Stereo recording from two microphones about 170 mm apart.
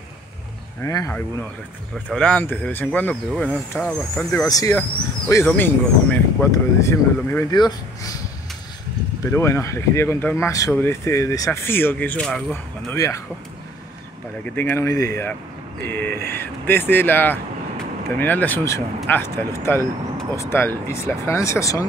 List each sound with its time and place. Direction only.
0.8 s speech: 15° left (ahead or behind)
2.0 s speech: 5° left (ahead or behind)
4.5 s speech: 20° left (ahead or behind)
9.2 s speech: 15° left (ahead or behind)
12.9 s speech: 20° left (ahead or behind)
14.4 s speech: 10° left (ahead or behind)